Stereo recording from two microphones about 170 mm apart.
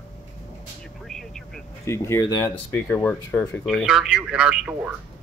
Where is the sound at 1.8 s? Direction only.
15° left (ahead or behind).